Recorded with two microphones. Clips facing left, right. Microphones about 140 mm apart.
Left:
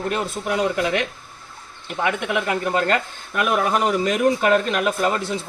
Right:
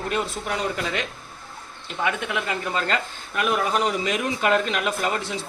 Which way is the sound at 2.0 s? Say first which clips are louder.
Left 3 dB; 55° left (ahead or behind).